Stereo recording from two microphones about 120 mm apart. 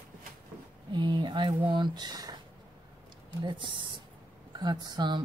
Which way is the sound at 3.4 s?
40° right (ahead or behind).